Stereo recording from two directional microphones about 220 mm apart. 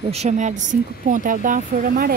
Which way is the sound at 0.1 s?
30° right (ahead or behind).